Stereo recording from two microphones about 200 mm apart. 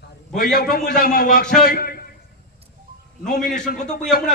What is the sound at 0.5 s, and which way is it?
A man's voice, 45° left (ahead or behind).